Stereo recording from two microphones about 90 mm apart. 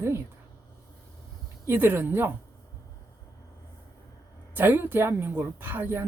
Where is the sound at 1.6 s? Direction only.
25° right (ahead or behind).